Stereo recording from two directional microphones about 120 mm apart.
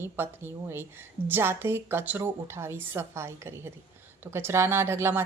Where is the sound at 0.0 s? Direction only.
20° right (ahead or behind).